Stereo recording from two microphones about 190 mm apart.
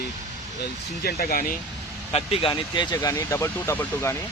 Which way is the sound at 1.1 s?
50° left (ahead or behind).